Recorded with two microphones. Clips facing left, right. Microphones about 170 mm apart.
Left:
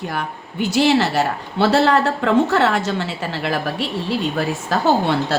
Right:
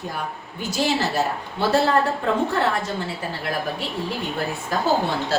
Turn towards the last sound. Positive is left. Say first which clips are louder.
# left 4 dB
turn(degrees=75)  # may be behind; listen again after turning